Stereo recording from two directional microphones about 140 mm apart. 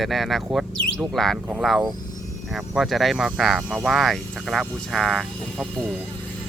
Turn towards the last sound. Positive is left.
turn(degrees=5)  # may be behind; listen again after turning